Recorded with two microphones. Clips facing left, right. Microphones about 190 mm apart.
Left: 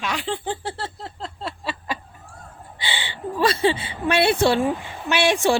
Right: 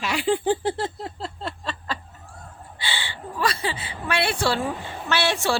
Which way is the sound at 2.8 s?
15° left (ahead or behind).